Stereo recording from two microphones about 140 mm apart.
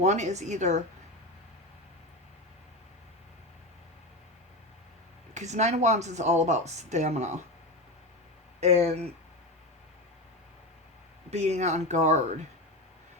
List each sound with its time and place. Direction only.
0.0 s speech: 55° right (ahead or behind)
5.3 s speech: 55° right (ahead or behind)
8.6 s speech: 50° right (ahead or behind)
11.3 s speech: 50° right (ahead or behind)